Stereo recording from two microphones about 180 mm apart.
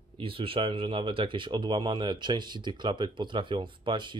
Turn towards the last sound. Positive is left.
turn(degrees=-25)  # may be behind; listen again after turning